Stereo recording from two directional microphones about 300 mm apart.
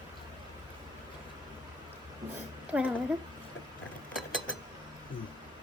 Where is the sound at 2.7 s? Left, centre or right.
Centre.